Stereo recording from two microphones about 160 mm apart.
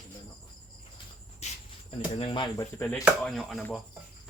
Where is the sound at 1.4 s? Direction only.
45° left (ahead or behind).